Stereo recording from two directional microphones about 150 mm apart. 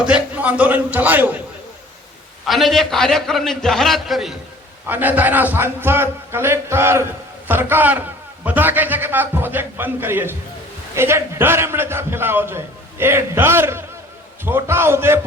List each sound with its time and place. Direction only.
0.0 s a man's voice: 10° right (ahead or behind)
2.5 s a man's voice: centre (ahead or behind)
4.9 s a man's voice: 10° right (ahead or behind)